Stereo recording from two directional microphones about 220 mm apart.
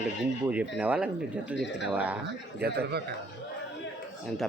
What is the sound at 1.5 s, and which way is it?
Speech, 55° left (ahead or behind).